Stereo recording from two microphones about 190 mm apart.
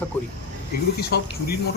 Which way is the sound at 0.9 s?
55° left (ahead or behind).